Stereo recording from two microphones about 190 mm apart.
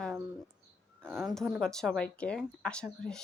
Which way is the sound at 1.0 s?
10° right (ahead or behind).